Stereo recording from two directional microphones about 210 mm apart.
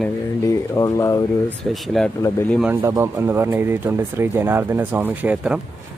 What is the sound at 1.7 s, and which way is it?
Speech, centre (ahead or behind).